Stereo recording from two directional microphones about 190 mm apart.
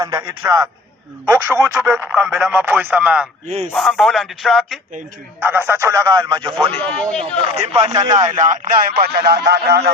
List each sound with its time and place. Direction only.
0.0 s a man's voice: 20° right (ahead or behind)
3.4 s speech: 35° right (ahead or behind)
3.7 s speech: centre (ahead or behind)
5.4 s speech: 10° right (ahead or behind)
6.8 s speech: 5° left (ahead or behind)
7.5 s speech: 35° right (ahead or behind)
7.9 s a man's voice: 20° right (ahead or behind)
8.3 s speech: 40° right (ahead or behind); by 9.9 s 60° right (ahead or behind)